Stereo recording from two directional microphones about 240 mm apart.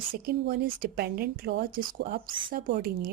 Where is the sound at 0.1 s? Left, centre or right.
Right.